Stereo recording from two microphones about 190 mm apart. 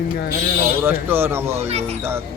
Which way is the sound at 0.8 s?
10° right (ahead or behind).